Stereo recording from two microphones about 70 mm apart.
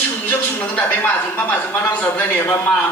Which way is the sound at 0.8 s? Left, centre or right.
Left.